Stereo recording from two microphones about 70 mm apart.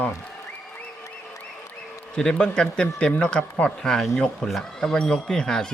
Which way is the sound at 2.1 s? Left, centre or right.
Centre.